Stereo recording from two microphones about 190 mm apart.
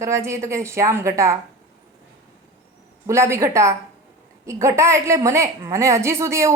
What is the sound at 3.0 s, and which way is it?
A man's voice, 15° right (ahead or behind).